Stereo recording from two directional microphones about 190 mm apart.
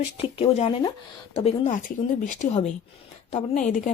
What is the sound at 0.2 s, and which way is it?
Speech, 30° left (ahead or behind).